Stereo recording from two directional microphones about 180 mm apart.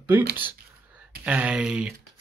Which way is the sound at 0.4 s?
10° right (ahead or behind).